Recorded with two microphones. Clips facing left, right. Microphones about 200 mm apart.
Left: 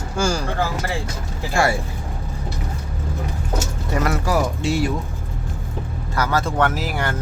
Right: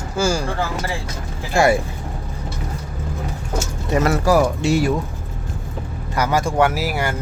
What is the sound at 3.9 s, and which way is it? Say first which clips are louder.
Speech: right 4 dB; 20° right (ahead or behind).